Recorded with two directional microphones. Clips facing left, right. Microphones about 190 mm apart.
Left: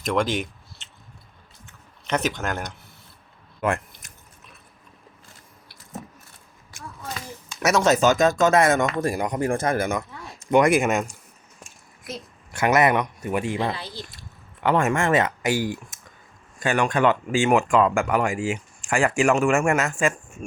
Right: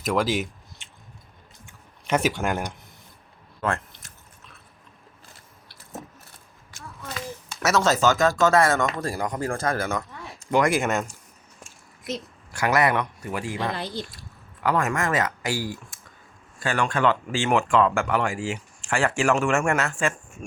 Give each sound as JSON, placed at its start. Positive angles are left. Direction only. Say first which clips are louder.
{"t": 0.0, "sound": "speech", "louder": "even", "side_deg": -5}
{"t": 1.6, "sound": "a sound", "louder": "right 1 dB", "side_deg": -10}
{"t": 3.6, "sound": "drip", "louder": "left 3 dB", "side_deg": 15}
{"t": 7.6, "sound": "speech", "louder": "left 2 dB", "side_deg": 15}
{"t": 12.5, "sound": "speech", "louder": "left 3 dB", "side_deg": 20}
{"t": 13.7, "sound": "speech", "louder": "right 5 dB", "side_deg": -55}
{"t": 14.1, "sound": "speech", "louder": "even", "side_deg": 25}
{"t": 19.3, "sound": "speech", "louder": "left 2 dB", "side_deg": 0}
{"t": 19.5, "sound": "speech", "louder": "left 2 dB", "side_deg": 15}